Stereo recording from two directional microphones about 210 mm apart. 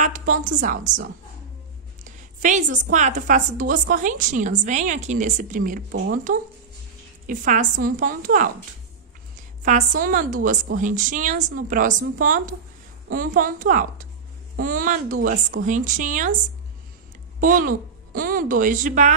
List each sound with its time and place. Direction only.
0.3 s a woman's voice: 40° right (ahead or behind)
2.0 s a woman's voice: 35° right (ahead or behind)
9.7 s a woman's voice: 40° right (ahead or behind)
17.4 s a woman's voice: 40° right (ahead or behind)